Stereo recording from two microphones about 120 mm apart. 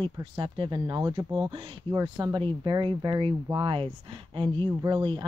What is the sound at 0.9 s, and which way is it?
Speech, 30° right (ahead or behind).